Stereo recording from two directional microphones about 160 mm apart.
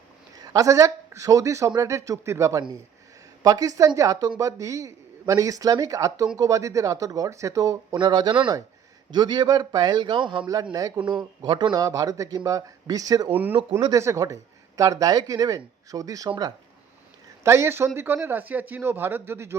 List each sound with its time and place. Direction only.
0.3 s speech: 20° right (ahead or behind)
13.3 s speech: 10° right (ahead or behind)